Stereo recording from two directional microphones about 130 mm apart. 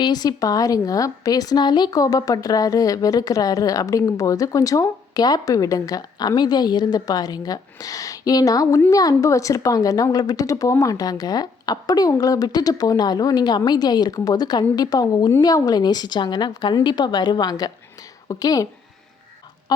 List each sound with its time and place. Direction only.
0.0 s a woman's voice: 30° left (ahead or behind)